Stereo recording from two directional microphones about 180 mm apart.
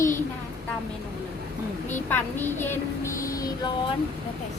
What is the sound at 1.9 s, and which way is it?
Child singing, 10° left (ahead or behind).